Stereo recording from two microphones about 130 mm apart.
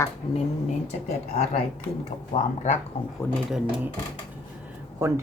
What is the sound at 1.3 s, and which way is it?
Speech, 50° left (ahead or behind).